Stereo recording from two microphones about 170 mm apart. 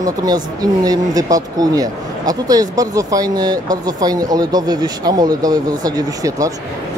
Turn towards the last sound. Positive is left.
turn(degrees=-20)  # may be behind; listen again after turning